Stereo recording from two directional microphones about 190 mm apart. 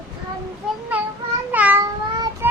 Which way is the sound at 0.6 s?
5° right (ahead or behind).